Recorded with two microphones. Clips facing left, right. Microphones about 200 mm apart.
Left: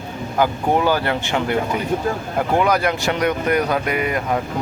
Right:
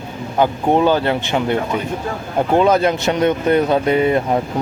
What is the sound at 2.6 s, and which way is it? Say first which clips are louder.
Speech: right 5 dB; 25° right (ahead or behind).